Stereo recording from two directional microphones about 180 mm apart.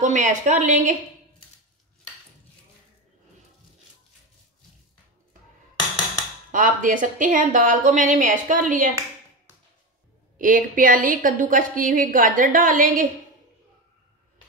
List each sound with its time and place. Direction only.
0.0 s a woman's voice: 45° right (ahead or behind)
6.5 s a woman's voice: 50° right (ahead or behind)
10.4 s a woman's voice: 50° right (ahead or behind)